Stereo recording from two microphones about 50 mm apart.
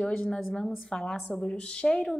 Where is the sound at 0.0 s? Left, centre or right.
Left.